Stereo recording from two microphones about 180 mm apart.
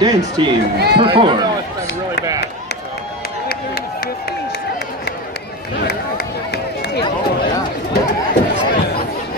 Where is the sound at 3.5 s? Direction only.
55° left (ahead or behind).